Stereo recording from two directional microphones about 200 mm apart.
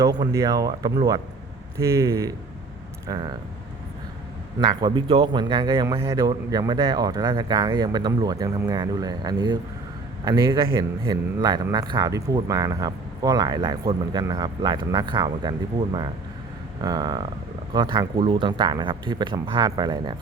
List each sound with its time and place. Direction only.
0.0 s a man's voice: 15° right (ahead or behind)
4.6 s a man's voice: 20° right (ahead or behind)